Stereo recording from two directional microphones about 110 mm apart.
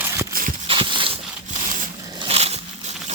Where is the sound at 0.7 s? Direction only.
50° right (ahead or behind).